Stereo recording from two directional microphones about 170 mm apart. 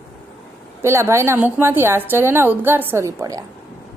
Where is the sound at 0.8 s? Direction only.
15° right (ahead or behind).